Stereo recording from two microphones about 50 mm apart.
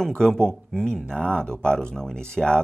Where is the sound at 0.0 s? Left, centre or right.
Centre.